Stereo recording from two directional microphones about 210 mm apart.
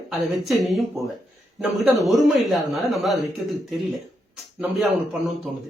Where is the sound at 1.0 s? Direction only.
15° right (ahead or behind).